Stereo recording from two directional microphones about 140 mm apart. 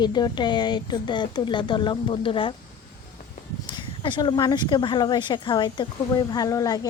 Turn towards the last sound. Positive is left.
turn(degrees=25)  # may be behind; listen again after turning